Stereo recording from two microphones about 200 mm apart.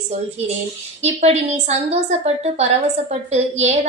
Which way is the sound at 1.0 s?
35° right (ahead or behind).